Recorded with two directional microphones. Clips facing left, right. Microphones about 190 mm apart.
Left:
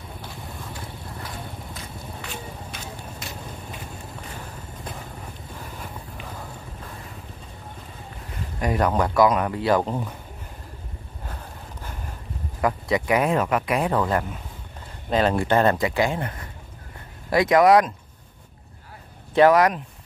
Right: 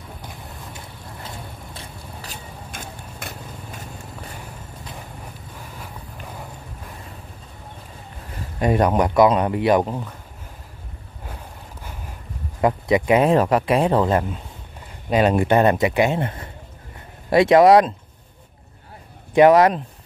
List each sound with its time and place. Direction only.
0.7 s vehicle: 25° right (ahead or behind)
2.7 s a sound: 50° right (ahead or behind)
8.5 s speech: 25° right (ahead or behind)
12.6 s speech: 20° right (ahead or behind)
19.3 s speech: 20° right (ahead or behind)